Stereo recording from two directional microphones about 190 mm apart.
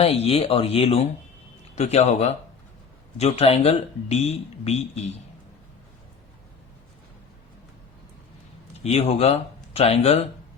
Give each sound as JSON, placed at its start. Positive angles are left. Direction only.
{"t": 0.0, "sound": "speech", "side_deg": 30}
{"t": 8.8, "sound": "speech", "side_deg": 35}